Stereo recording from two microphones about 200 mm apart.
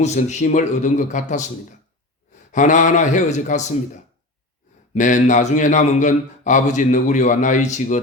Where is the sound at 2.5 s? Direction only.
40° left (ahead or behind).